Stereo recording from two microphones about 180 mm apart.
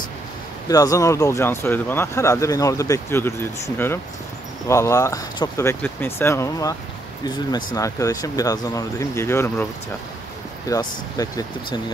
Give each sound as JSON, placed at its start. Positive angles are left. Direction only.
{"t": 0.7, "sound": "speech", "side_deg": 20}
{"t": 10.7, "sound": "speech", "side_deg": 20}